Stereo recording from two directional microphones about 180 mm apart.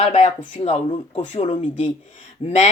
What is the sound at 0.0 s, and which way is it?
Speech, 40° left (ahead or behind).